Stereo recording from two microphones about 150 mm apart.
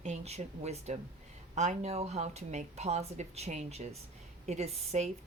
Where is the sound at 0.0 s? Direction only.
50° right (ahead or behind).